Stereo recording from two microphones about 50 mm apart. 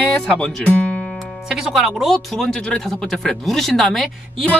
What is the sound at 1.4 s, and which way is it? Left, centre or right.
Speech, centre.